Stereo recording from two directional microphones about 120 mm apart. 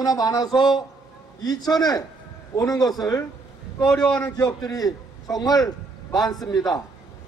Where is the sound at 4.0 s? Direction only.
10° left (ahead or behind).